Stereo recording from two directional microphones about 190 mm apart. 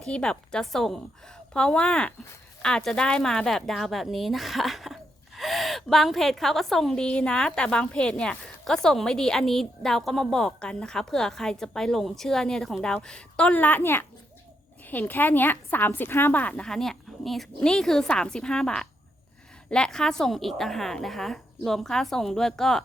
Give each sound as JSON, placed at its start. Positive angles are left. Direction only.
{"t": 0.0, "sound": "a woman's voice", "side_deg": 5}